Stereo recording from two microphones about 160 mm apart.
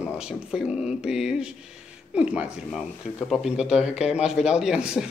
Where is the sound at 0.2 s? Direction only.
5° right (ahead or behind).